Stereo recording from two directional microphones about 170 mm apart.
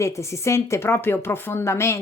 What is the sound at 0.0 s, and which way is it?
A woman's voice, 15° left (ahead or behind).